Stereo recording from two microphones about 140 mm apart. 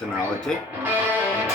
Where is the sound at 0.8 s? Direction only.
10° right (ahead or behind).